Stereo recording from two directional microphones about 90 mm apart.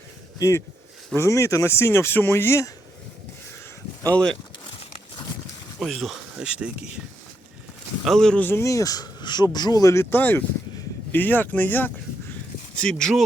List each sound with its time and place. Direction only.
0.3 s speech: 40° left (ahead or behind)
4.1 s speech: 10° left (ahead or behind)
5.8 s speech: centre (ahead or behind)
8.0 s speech: 5° left (ahead or behind)
8.4 s speech: 25° left (ahead or behind)
8.6 s speech: 40° left (ahead or behind)
9.9 s speech: 25° left (ahead or behind)
12.7 s speech: 10° left (ahead or behind)